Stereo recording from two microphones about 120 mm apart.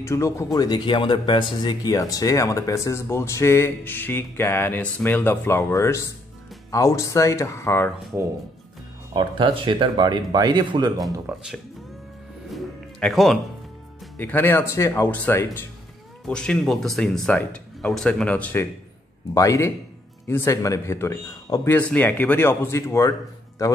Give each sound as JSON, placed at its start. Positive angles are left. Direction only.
{"t": 0.0, "sound": "a man's voice", "side_deg": 25}
{"t": 9.1, "sound": "speech", "side_deg": -45}
{"t": 11.2, "sound": "speech", "side_deg": -5}
{"t": 12.5, "sound": "music", "side_deg": 0}
{"t": 14.1, "sound": "a man's voice", "side_deg": 15}
{"t": 16.3, "sound": "speech", "side_deg": 5}
{"t": 19.3, "sound": "a man's voice", "side_deg": 25}